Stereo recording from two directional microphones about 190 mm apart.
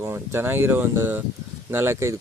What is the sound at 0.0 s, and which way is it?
Speech, 15° right (ahead or behind).